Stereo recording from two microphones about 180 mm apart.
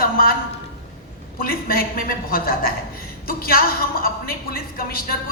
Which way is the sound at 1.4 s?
55° left (ahead or behind).